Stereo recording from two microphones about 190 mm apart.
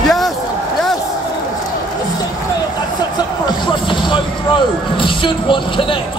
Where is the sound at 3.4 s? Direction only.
25° left (ahead or behind).